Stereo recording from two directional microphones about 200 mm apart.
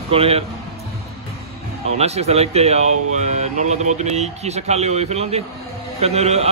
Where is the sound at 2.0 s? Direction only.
30° right (ahead or behind).